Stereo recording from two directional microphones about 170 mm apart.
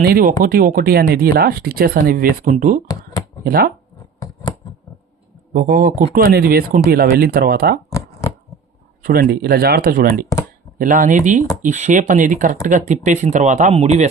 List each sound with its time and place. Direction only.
0.0 s speech: 60° right (ahead or behind)
2.8 s a sound: 20° left (ahead or behind)
3.4 s speech: 65° right (ahead or behind)
5.5 s speech: 55° right (ahead or behind)
9.0 s speech: 65° right (ahead or behind); by 14.1 s 45° right (ahead or behind)